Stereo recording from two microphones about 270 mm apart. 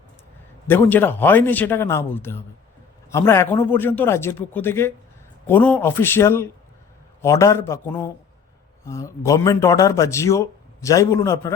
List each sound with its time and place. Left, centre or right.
0.7 s a man's voice: centre